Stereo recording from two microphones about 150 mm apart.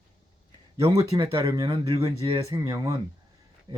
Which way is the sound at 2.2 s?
35° right (ahead or behind).